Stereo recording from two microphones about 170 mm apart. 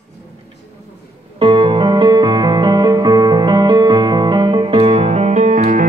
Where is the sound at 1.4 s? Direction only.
30° right (ahead or behind).